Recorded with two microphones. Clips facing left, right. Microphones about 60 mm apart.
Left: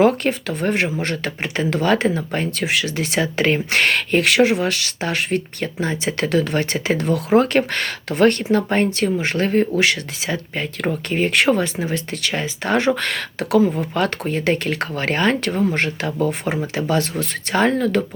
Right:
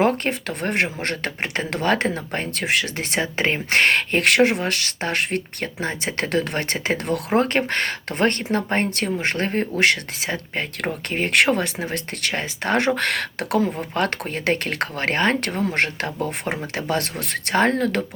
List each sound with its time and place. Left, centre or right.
0.0 s speech: right
7.3 s speech: right